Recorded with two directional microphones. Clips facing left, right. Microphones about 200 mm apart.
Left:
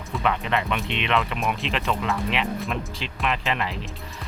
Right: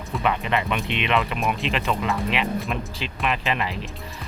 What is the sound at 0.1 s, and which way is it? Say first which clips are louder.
Speech: right 1 dB; 5° right (ahead or behind).